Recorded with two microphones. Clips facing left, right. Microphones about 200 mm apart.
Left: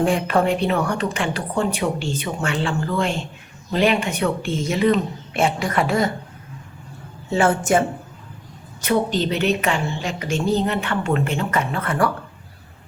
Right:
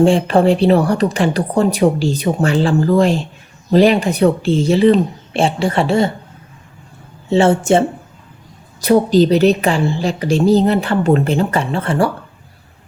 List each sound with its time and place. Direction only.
0.0 s a woman's voice: 30° right (ahead or behind)
7.3 s a woman's voice: 25° right (ahead or behind)